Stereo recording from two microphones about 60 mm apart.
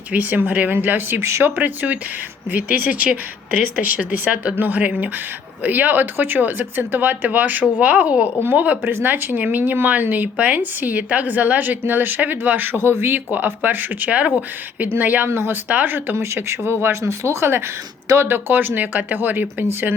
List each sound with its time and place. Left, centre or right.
0.1 s speech: right
1.2 s speech: right
1.5 s speech: right
8.9 s speech: right
15.3 s speech: right
15.7 s speech: right
16.0 s speech: right